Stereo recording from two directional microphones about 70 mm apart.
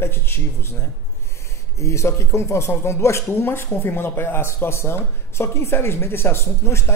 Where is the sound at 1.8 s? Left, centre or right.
Left.